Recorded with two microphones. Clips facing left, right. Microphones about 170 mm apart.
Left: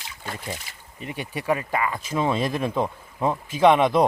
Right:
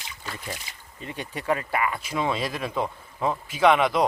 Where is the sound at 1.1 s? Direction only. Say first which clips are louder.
Left 2 dB; 15° left (ahead or behind).